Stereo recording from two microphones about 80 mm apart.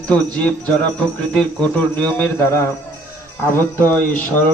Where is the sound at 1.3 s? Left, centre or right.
Centre.